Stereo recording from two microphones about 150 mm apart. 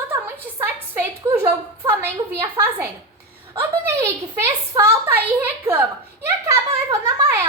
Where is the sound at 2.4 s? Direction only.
15° right (ahead or behind).